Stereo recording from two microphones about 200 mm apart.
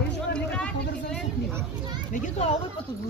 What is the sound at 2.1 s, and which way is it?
Speech, 30° left (ahead or behind).